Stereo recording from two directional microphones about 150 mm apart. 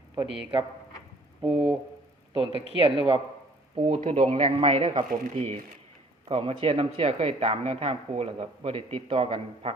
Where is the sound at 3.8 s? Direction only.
45° right (ahead or behind).